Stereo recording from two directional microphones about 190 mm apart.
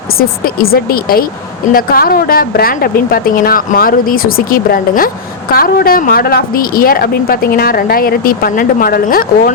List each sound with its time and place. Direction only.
0.1 s a woman's voice: 50° left (ahead or behind)